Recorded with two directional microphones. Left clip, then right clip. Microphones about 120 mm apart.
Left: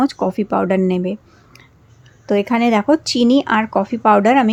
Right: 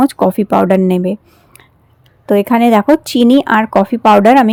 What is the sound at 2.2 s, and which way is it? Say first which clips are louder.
Speech: right 6 dB; 35° right (ahead or behind).